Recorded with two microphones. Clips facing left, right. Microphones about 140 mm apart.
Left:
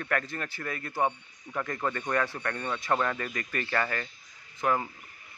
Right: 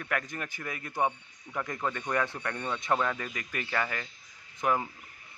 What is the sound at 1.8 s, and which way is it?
Speech, 5° right (ahead or behind).